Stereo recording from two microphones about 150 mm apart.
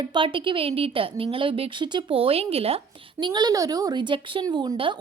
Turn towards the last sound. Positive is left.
turn(degrees=-30)  # may be behind; listen again after turning